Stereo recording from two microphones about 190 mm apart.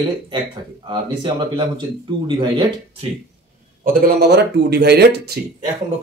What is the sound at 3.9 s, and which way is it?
Speech, 50° right (ahead or behind).